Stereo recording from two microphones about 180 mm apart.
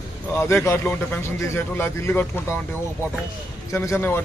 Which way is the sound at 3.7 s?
15° left (ahead or behind).